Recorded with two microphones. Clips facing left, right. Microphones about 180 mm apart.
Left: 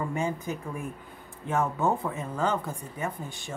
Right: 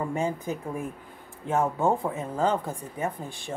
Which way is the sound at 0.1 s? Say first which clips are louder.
Right 2 dB; 30° right (ahead or behind).